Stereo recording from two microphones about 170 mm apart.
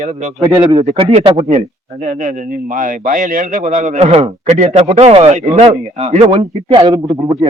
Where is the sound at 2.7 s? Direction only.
50° right (ahead or behind); by 7.5 s 20° right (ahead or behind).